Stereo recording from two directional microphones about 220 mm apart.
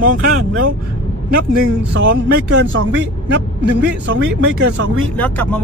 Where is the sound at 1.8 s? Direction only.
50° right (ahead or behind).